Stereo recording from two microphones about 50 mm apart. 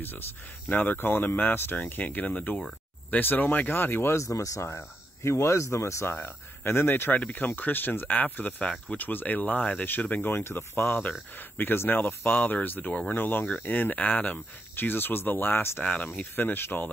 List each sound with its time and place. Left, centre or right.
0.7 s speech: left
3.2 s speech: left
4.2 s speech: left
4.6 s speech: left
6.1 s speech: left
7.2 s speech: left
10.3 s speech: left
15.8 s speech: left
16.2 s speech: left